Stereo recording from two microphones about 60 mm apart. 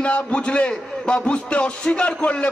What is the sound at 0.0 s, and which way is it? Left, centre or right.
A man's voice, centre.